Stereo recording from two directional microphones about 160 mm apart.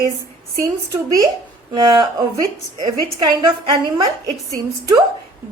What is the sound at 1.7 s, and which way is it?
A woman's voice, 25° right (ahead or behind).